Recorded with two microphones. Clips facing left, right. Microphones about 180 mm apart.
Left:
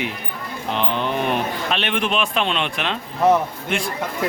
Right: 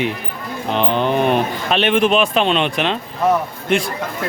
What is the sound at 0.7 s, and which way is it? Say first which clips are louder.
Speech: right 5 dB; 35° right (ahead or behind).